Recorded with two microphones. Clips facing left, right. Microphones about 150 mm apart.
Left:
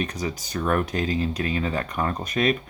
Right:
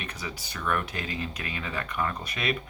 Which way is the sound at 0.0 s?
40° left (ahead or behind).